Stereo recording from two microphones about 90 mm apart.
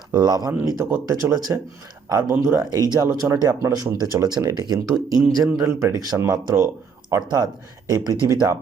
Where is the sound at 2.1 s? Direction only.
40° right (ahead or behind).